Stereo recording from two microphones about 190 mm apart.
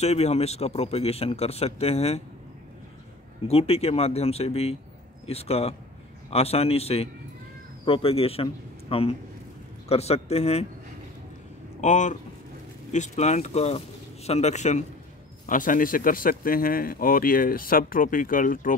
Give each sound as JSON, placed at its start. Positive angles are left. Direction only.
{"t": 0.0, "sound": "speech", "side_deg": 35}
{"t": 3.4, "sound": "a man's voice", "side_deg": 30}
{"t": 11.8, "sound": "speech", "side_deg": 40}